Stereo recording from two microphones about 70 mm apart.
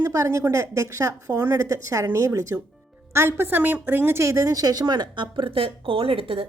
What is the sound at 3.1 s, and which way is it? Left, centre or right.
A woman's voice, right.